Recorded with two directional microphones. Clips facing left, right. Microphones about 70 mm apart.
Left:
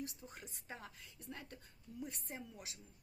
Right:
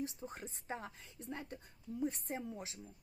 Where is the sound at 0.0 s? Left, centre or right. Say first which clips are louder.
Right 6 dB; right.